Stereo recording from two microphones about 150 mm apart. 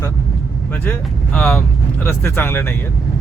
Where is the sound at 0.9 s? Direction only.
10° left (ahead or behind).